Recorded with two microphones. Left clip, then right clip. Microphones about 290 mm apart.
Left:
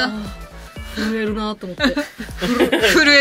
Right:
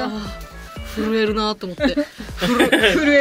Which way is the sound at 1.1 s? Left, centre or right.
Centre.